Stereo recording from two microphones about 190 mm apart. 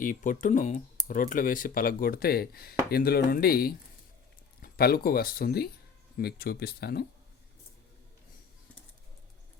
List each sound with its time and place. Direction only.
0.0 s speech: 45° left (ahead or behind)